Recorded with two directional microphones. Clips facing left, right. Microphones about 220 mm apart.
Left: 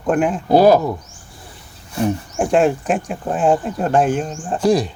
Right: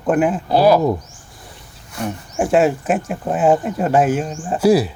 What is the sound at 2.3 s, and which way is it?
Speech, 5° right (ahead or behind).